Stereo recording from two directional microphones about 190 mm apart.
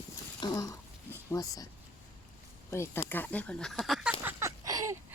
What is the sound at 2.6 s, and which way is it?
Speech, 15° left (ahead or behind).